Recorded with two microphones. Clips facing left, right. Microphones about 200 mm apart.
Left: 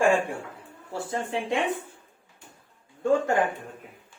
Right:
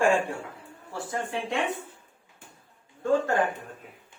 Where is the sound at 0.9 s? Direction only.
25° left (ahead or behind).